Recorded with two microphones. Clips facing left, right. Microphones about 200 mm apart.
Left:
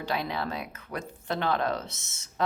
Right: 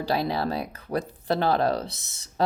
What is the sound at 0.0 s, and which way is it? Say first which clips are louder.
Speech: right 5 dB; 35° right (ahead or behind).